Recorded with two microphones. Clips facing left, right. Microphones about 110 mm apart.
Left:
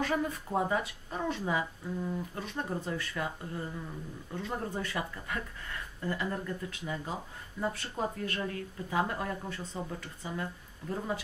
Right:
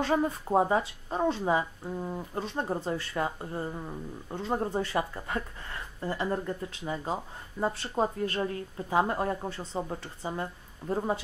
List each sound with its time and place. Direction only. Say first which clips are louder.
0.0 s a woman's voice: right 4 dB; 30° right (ahead or behind)